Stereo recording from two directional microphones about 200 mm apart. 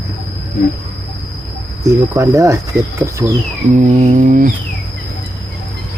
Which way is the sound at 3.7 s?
35° right (ahead or behind).